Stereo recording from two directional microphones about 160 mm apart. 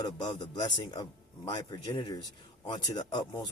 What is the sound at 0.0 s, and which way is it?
Speech, 25° left (ahead or behind).